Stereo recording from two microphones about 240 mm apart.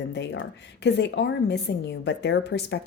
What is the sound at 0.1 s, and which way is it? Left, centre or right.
Speech, left.